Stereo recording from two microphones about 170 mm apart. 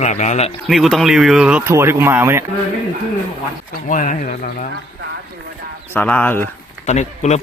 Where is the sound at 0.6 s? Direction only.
Centre (ahead or behind).